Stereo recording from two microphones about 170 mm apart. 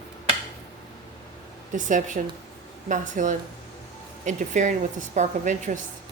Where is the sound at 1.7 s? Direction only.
50° right (ahead or behind).